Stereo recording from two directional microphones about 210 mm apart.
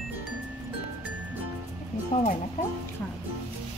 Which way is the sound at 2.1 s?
35° left (ahead or behind).